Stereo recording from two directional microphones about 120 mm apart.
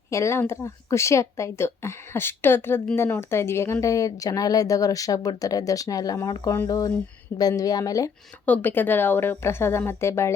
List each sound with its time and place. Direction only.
0.1 s speech: 25° left (ahead or behind)
8.4 s a woman's voice: 15° left (ahead or behind)